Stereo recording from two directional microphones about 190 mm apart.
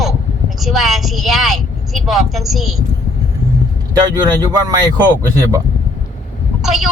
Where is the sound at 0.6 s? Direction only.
Centre (ahead or behind).